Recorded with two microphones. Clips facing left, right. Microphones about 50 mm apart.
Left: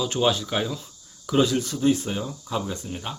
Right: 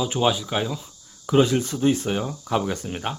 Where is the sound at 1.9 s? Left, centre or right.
Right.